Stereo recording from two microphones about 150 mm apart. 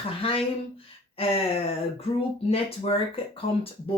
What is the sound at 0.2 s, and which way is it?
Speech, 40° left (ahead or behind).